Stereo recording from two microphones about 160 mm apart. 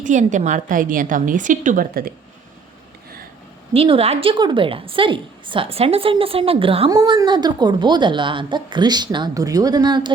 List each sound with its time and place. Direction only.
0.0 s a woman's voice: 50° right (ahead or behind)
3.7 s a woman's voice: 35° right (ahead or behind)
6.9 s a woman's voice: 25° right (ahead or behind)